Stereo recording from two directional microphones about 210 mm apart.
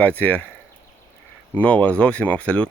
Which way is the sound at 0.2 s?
5° left (ahead or behind).